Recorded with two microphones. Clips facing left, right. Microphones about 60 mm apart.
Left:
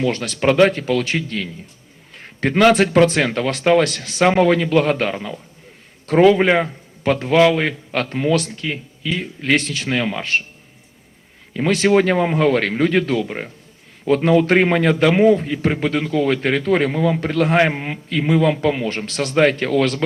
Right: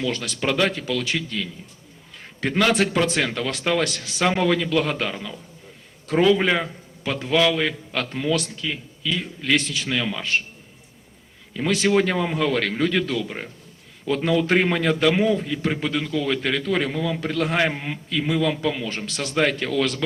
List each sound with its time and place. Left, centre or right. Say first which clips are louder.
0.0 s a man's voice: left 7 dB; left
11.5 s a man's voice: left 5 dB; left